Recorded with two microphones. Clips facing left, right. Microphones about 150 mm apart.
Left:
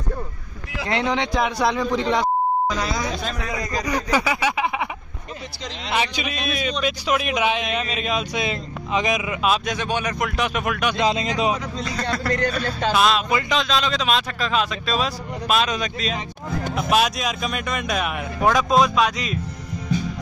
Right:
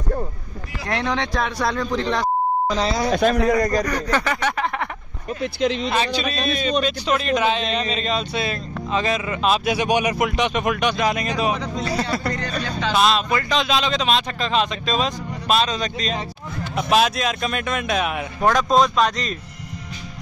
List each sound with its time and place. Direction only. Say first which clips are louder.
1.1 s speech: left 1 dB; 15° left (ahead or behind)
3.1 s speech: right 10 dB; 60° right (ahead or behind)
3.8 s speech: even; 10° left (ahead or behind)
5.4 s speech: right 16 dB; 60° right (ahead or behind)
5.9 s speech: right 2 dB; 15° left (ahead or behind)
9.7 s a man's voice: right 5 dB; 15° right (ahead or behind)
11.0 s speech: even; 25° left (ahead or behind)
12.0 s a man's voice: left 2 dB; 5° right (ahead or behind)
12.3 s speech: left 4 dB; 60° left (ahead or behind)
12.9 s a man's voice: right 1 dB; centre (ahead or behind)
13.3 s speech: even; 15° left (ahead or behind)
13.6 s a man's voice: right 1 dB; centre (ahead or behind)